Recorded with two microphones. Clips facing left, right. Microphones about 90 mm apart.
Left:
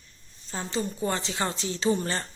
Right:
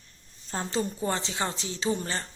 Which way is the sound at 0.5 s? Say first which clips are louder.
Right 1 dB; 35° right (ahead or behind).